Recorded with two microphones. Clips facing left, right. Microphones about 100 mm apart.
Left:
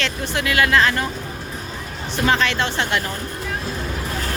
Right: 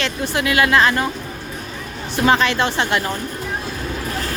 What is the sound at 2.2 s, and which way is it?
Speech, 20° right (ahead or behind).